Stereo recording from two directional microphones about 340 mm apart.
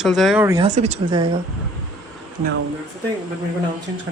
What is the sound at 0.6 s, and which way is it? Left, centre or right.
Speech, centre.